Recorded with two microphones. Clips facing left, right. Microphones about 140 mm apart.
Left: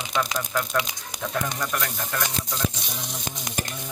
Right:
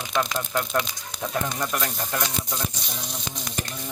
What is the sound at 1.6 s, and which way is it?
Speech, 20° right (ahead or behind).